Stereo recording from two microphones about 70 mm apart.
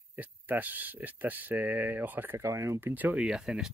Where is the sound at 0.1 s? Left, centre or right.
Right.